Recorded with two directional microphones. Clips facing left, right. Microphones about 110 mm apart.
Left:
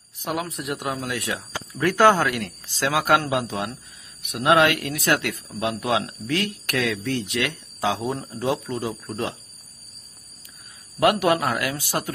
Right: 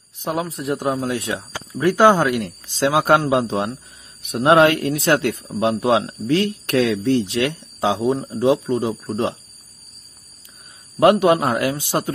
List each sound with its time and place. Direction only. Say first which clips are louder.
0.2 s a man's voice: right 4 dB; 30° right (ahead or behind)
1.7 s a man's voice: right 3 dB; 15° right (ahead or behind)
11.0 s a man's voice: right 5 dB; 20° right (ahead or behind)